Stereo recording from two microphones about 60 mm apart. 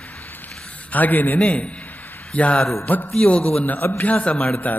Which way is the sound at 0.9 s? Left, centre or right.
Left.